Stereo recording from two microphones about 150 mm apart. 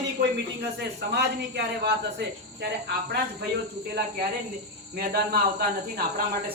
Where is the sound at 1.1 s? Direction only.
90° right.